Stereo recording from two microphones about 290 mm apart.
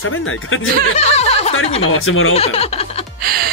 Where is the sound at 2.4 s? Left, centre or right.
Centre.